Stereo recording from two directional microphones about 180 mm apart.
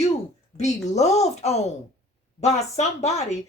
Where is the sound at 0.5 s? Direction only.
40° left (ahead or behind).